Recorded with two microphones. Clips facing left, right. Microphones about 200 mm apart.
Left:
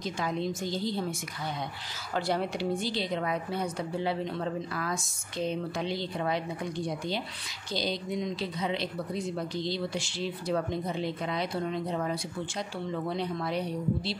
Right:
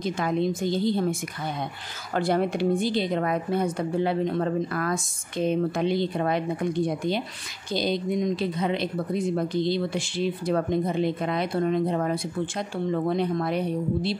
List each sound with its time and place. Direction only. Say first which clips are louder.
0.0 s a woman's voice: right 6 dB; 55° right (ahead or behind)
2.1 s speech: right 6 dB; 50° right (ahead or behind)